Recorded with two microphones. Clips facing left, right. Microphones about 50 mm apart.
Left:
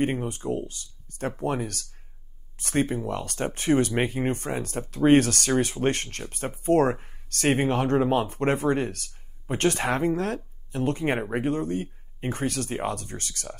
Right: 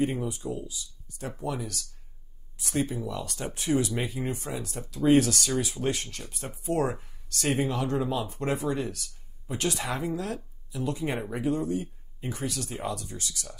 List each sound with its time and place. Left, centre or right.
0.0 s speech: left